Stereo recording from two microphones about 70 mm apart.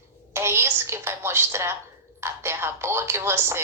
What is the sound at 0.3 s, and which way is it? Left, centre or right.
A woman's voice, right.